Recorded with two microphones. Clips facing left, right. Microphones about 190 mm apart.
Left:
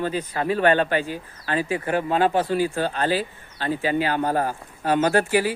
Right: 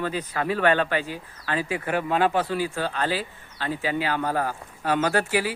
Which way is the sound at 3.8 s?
45° left (ahead or behind).